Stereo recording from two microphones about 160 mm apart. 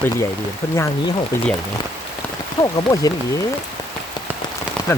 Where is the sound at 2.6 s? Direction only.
25° left (ahead or behind).